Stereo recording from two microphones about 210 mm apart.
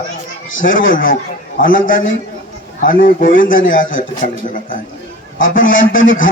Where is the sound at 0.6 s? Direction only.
40° left (ahead or behind).